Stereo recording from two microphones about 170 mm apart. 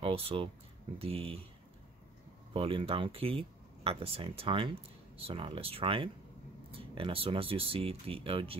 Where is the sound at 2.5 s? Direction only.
35° right (ahead or behind).